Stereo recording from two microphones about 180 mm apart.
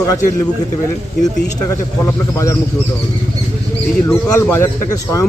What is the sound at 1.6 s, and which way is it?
Speech, 15° left (ahead or behind).